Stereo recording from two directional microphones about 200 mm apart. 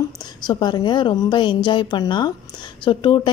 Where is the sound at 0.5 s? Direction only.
20° left (ahead or behind).